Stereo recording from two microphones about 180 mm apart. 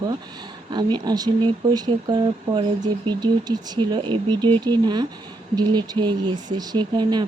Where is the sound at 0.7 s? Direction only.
25° right (ahead or behind).